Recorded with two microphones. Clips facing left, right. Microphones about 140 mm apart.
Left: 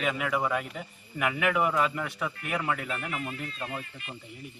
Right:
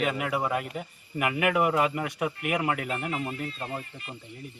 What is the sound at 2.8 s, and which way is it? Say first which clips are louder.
Speech: right 3 dB; 30° right (ahead or behind).